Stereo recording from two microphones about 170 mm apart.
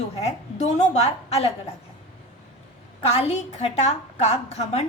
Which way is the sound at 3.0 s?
35° left (ahead or behind).